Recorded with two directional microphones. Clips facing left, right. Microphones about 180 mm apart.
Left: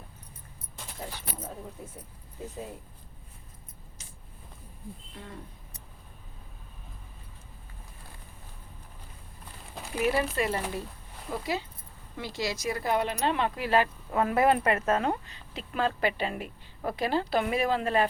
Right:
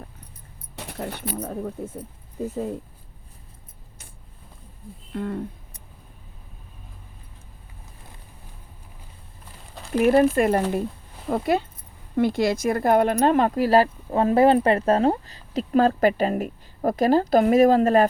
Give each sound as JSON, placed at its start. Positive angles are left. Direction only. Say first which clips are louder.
{"t": 0.8, "sound": "speech", "louder": "right 9 dB", "side_deg": -65}
{"t": 5.1, "sound": "speech", "louder": "right 15 dB", "side_deg": -55}
{"t": 9.9, "sound": "speech", "louder": "right 10 dB", "side_deg": -50}